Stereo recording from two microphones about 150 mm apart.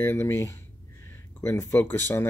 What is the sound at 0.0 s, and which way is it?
Speech, 15° left (ahead or behind).